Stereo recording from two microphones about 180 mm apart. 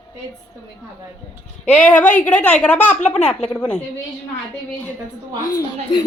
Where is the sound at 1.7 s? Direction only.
10° left (ahead or behind).